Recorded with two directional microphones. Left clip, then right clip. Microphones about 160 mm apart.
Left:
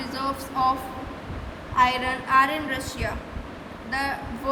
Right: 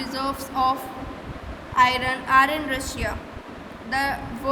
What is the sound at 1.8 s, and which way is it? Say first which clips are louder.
A woman's voice: right 2 dB; 40° right (ahead or behind).